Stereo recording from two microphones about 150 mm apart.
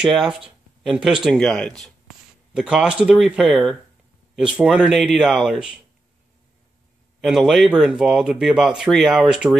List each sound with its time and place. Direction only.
0.0 s speech: 5° right (ahead or behind)
7.2 s speech: centre (ahead or behind)